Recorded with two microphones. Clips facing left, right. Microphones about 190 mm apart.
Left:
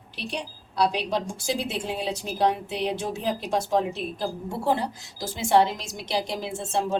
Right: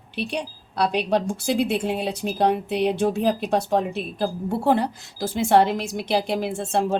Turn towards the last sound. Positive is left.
turn(degrees=-60)  # may be behind; listen again after turning